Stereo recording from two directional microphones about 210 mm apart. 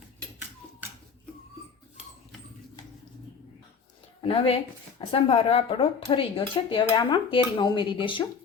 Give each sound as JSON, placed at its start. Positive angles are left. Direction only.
{"t": 4.2, "sound": "speech", "side_deg": 25}